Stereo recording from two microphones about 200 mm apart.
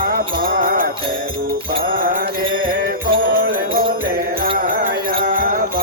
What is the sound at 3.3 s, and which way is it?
Music, 45° right (ahead or behind).